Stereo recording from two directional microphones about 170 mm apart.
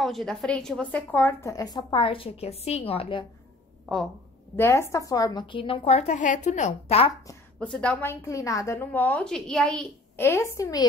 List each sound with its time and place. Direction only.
0.0 s a woman's voice: centre (ahead or behind); by 3.3 s 30° left (ahead or behind)
4.6 s a woman's voice: 15° left (ahead or behind); by 7.1 s 40° left (ahead or behind)
7.5 s a woman's voice: 5° left (ahead or behind)